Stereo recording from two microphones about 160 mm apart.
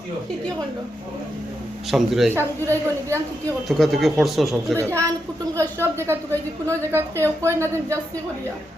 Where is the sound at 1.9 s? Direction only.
Centre (ahead or behind).